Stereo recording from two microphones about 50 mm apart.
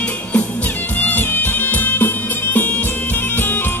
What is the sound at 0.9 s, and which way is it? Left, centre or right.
Music, left.